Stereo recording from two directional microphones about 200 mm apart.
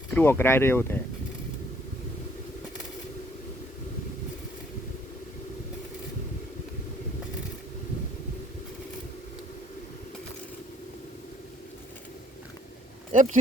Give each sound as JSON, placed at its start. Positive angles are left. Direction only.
{"t": 0.1, "sound": "speech", "side_deg": 10}
{"t": 13.1, "sound": "speech", "side_deg": -40}